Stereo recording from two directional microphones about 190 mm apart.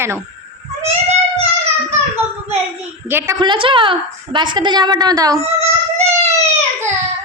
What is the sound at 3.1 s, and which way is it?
Speech, 20° right (ahead or behind).